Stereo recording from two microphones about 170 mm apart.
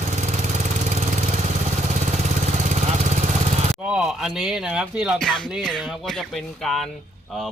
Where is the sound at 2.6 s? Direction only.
45° right (ahead or behind).